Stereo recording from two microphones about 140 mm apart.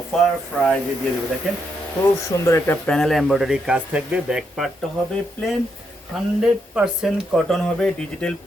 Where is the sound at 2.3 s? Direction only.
20° left (ahead or behind).